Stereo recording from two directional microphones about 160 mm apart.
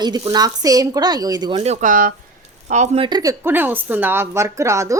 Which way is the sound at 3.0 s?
25° right (ahead or behind).